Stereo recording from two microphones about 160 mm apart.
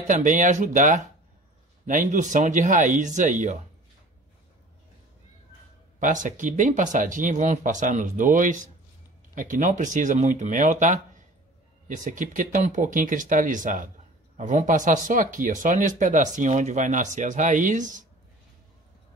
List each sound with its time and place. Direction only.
0.0 s speech: 55° right (ahead or behind)
5.9 s speech: 55° right (ahead or behind)